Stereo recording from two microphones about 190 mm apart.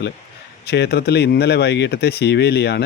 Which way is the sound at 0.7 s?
60° left (ahead or behind).